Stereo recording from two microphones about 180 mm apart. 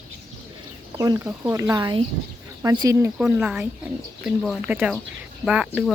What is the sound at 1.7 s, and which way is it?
Speech, 25° right (ahead or behind).